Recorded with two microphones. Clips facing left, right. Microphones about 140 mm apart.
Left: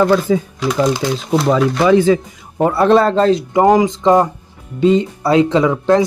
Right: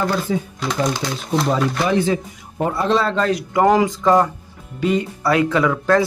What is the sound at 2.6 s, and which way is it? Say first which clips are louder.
Speech: left 7 dB; 70° left (ahead or behind).